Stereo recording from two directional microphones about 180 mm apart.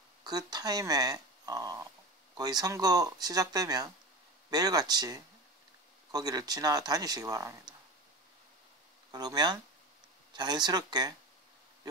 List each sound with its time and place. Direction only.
0.2 s speech: 20° right (ahead or behind)
9.1 s speech: 25° right (ahead or behind)